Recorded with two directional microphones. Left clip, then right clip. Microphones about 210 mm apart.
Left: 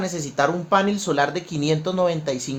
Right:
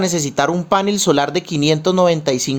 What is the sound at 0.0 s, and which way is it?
A man's voice, 35° right (ahead or behind).